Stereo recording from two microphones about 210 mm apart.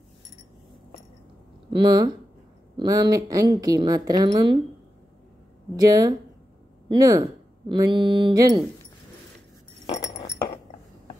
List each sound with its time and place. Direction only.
1.7 s a woman's voice: 20° right (ahead or behind)
5.8 s a woman's voice: 15° right (ahead or behind)